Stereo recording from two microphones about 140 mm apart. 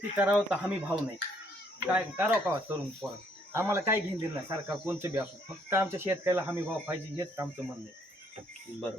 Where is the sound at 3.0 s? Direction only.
Centre (ahead or behind).